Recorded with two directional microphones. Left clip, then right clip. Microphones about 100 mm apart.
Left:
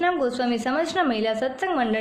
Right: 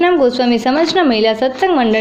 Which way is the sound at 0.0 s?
20° right (ahead or behind).